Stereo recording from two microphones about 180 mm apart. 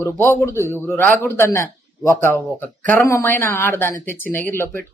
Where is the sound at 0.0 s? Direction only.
15° left (ahead or behind).